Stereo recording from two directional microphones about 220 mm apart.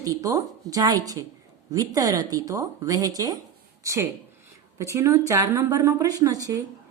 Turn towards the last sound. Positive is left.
turn(degrees=-15)  # may be behind; listen again after turning